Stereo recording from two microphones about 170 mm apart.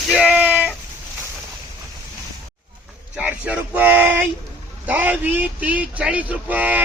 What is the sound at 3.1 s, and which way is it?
Speech, 5° right (ahead or behind).